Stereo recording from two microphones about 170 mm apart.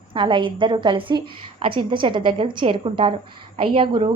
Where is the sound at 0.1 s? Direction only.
30° right (ahead or behind).